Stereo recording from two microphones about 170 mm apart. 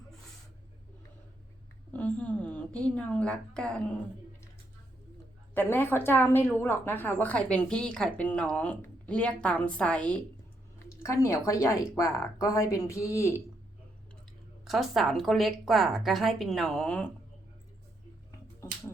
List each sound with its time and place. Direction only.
1.9 s a woman's voice: 10° left (ahead or behind)
5.5 s a woman's voice: 10° left (ahead or behind)
10.8 s a woman's voice: 15° left (ahead or behind)
14.6 s a woman's voice: centre (ahead or behind)